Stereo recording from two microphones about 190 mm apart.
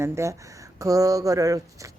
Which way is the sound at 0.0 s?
15° right (ahead or behind).